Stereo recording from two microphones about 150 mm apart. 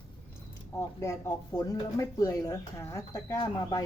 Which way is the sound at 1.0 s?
20° left (ahead or behind).